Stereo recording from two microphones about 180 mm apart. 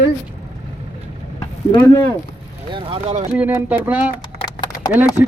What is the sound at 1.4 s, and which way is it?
Vehicle, 20° left (ahead or behind).